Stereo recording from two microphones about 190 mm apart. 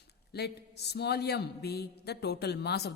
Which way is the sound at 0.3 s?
60° left (ahead or behind).